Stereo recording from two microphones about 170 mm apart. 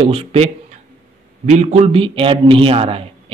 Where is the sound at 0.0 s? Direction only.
35° right (ahead or behind).